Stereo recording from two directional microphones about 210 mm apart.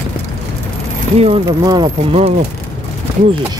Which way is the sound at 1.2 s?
25° right (ahead or behind).